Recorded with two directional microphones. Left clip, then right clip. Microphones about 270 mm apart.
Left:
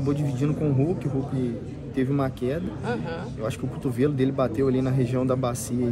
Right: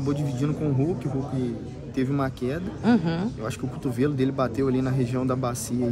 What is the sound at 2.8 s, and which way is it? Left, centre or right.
Speech, right.